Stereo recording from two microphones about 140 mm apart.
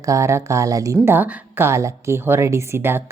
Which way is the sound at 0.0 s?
20° right (ahead or behind).